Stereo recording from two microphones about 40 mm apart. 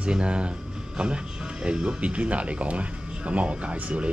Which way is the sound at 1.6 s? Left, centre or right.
Right.